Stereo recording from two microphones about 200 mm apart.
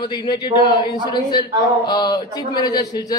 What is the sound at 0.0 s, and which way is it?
A man's voice, 20° left (ahead or behind).